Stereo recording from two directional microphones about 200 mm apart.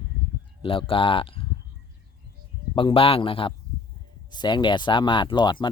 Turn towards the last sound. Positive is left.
turn(degrees=25)  # may be behind; listen again after turning